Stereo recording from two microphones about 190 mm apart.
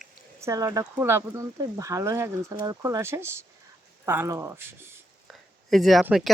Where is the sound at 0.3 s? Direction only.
15° right (ahead or behind).